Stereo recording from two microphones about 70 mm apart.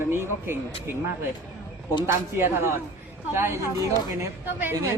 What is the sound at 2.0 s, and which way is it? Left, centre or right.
Speech, right.